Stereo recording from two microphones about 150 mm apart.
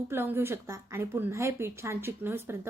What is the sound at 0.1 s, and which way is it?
A woman's voice, 15° right (ahead or behind).